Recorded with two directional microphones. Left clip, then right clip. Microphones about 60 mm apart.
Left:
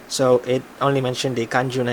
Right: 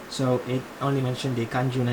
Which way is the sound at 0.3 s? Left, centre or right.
Centre.